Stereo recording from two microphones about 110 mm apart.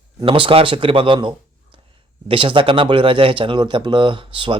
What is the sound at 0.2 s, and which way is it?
Speech, 50° right (ahead or behind).